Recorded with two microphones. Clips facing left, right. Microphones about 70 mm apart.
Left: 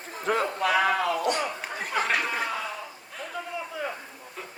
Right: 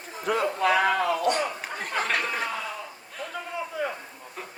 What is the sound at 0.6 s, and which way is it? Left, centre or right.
Speech, right.